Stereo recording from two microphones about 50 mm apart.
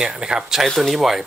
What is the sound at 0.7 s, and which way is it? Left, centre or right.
Speech, centre.